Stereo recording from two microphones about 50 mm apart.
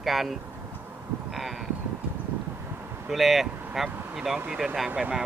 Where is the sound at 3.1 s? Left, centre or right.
Centre.